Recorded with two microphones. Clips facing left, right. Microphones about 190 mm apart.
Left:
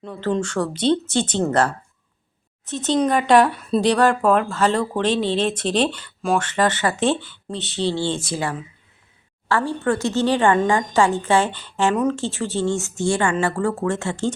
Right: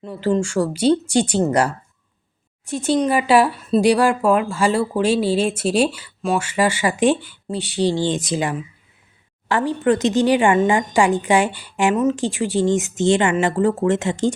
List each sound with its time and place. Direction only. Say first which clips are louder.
0.0 s a woman's voice: right 3 dB; 10° right (ahead or behind)